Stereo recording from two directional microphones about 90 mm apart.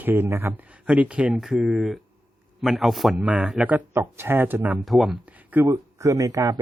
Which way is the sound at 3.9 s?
25° right (ahead or behind).